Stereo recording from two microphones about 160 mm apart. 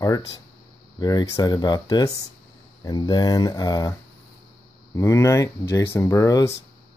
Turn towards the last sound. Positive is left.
turn(degrees=20)  # may be behind; listen again after turning